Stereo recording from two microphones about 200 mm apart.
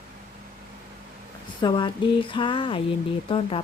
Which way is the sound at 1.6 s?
25° left (ahead or behind).